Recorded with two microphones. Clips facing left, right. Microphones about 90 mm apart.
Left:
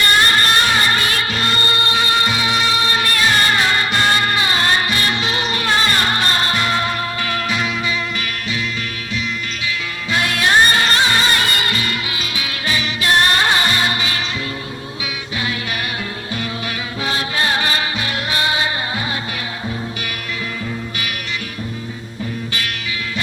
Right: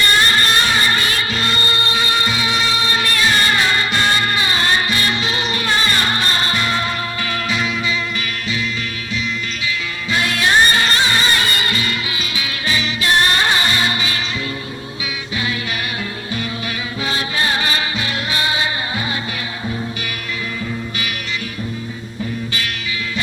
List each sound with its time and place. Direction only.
0.0 s music: 55° left (ahead or behind)
5.6 s music: 65° left (ahead or behind)
9.6 s music: 60° left (ahead or behind)
17.1 s music: 55° left (ahead or behind)